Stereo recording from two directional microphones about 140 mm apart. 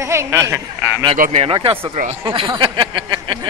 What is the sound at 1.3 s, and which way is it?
Speech, 40° right (ahead or behind).